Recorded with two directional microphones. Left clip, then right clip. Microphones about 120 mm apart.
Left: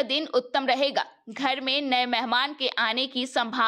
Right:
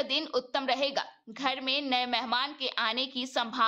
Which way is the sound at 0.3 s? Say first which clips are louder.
Left 6 dB; 35° left (ahead or behind).